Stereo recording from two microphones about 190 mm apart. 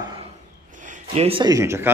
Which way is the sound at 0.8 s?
35° right (ahead or behind).